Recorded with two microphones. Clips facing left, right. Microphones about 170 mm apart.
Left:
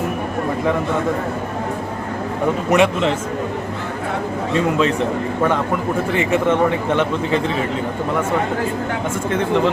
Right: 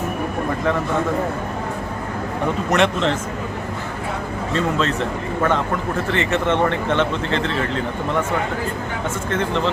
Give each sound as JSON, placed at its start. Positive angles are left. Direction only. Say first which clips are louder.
{"t": 2.6, "sound": "speech", "louder": "left 3 dB", "side_deg": 10}
{"t": 4.8, "sound": "speech", "louder": "left 4 dB", "side_deg": 10}